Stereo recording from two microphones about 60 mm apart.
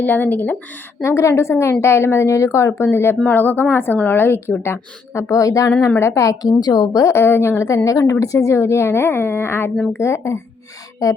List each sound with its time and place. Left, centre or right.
0.0 s a woman's voice: left
1.0 s a woman's voice: left
5.3 s a woman's voice: left
7.1 s speech: left
7.9 s speech: left
11.0 s speech: left